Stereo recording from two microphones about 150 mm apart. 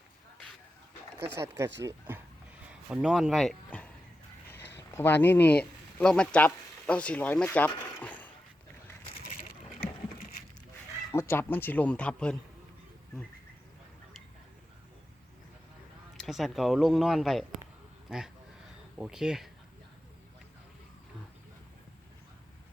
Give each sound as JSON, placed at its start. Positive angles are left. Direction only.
{"t": 1.2, "sound": "speech", "side_deg": -20}
{"t": 2.9, "sound": "speech", "side_deg": -5}
{"t": 11.1, "sound": "speech", "side_deg": 15}
{"t": 16.2, "sound": "speech", "side_deg": 0}
{"t": 18.9, "sound": "speech", "side_deg": -5}